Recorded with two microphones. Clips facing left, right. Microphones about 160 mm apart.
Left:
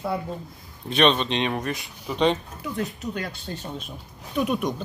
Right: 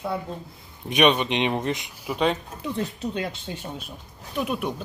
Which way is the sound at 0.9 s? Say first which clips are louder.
Right 1 dB; 15° right (ahead or behind).